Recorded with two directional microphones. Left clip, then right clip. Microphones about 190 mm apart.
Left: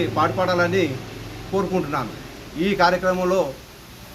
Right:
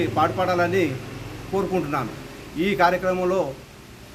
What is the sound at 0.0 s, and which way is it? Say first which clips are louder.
A man's voice: left 1 dB; centre (ahead or behind).